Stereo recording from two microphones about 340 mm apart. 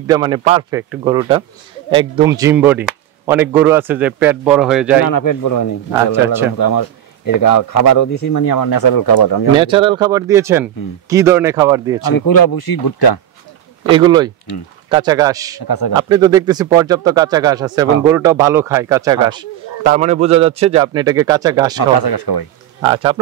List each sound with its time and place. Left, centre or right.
0.0 s a man's voice: centre
5.0 s speech: left
6.1 s speech: centre
6.6 s speech: left
9.6 s speech: centre
12.0 s speech: left
13.8 s speech: centre
21.7 s speech: left
22.8 s speech: centre